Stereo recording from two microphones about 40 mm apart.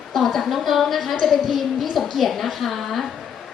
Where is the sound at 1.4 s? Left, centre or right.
Centre.